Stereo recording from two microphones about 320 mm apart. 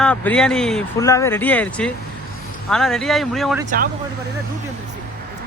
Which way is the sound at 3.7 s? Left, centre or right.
Right.